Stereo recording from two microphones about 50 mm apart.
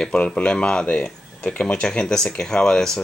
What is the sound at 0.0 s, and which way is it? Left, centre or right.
Speech, centre.